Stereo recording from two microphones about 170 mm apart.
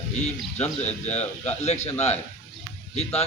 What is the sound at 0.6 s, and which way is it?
A man's voice, 40° left (ahead or behind).